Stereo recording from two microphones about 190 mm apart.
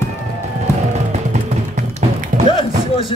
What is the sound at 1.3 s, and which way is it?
Music, 35° right (ahead or behind).